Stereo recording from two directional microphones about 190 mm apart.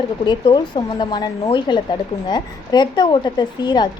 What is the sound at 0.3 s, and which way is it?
Speech, 25° left (ahead or behind).